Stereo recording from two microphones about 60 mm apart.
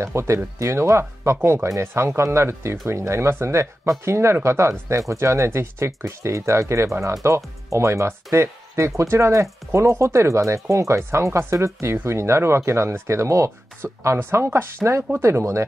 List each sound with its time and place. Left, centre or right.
0.0 s speech: right
14.1 s speech: right